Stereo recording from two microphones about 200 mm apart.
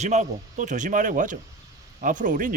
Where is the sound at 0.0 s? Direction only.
35° right (ahead or behind).